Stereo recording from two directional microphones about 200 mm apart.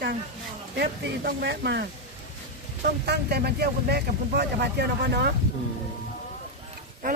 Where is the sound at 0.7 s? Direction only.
55° right (ahead or behind).